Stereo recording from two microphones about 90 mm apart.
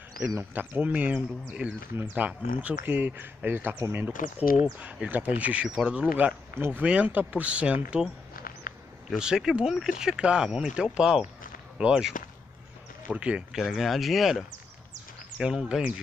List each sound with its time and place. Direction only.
0.4 s speech: 20° right (ahead or behind)
9.1 s speech: 10° right (ahead or behind)
13.1 s speech: 10° right (ahead or behind)